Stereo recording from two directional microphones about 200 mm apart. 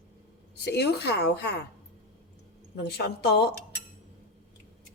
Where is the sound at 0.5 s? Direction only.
55° left (ahead or behind).